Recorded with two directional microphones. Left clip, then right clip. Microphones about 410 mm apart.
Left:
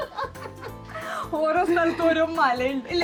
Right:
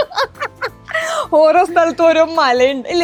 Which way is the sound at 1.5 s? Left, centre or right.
Right.